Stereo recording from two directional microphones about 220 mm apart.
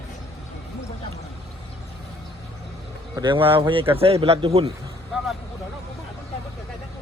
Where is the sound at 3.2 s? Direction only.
20° right (ahead or behind).